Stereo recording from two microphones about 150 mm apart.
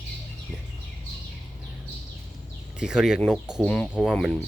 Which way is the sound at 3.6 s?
10° left (ahead or behind).